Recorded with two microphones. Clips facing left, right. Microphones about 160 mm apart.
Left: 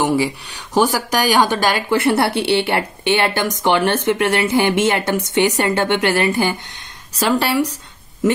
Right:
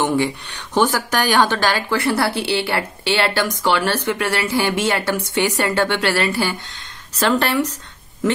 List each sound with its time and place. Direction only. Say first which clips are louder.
0.0 s a woman's voice: left 1 dB; 10° left (ahead or behind)